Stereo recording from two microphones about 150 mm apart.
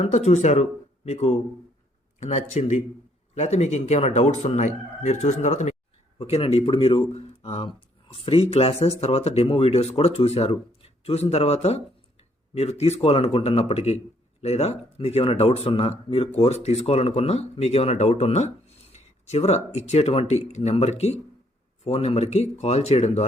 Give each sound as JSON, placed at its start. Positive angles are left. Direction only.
{"t": 0.0, "sound": "speech", "side_deg": 50}